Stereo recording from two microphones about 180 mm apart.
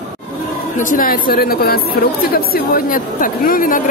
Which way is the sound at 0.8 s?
50° left (ahead or behind).